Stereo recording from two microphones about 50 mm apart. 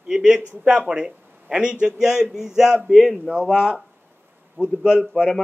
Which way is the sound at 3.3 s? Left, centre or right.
Centre.